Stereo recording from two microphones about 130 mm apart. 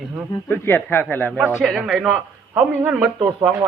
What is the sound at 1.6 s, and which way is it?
A man's voice, centre (ahead or behind).